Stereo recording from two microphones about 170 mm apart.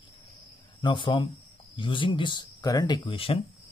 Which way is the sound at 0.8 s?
30° left (ahead or behind).